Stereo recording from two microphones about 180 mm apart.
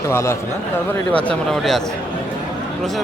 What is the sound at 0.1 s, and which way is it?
Speech, 15° left (ahead or behind).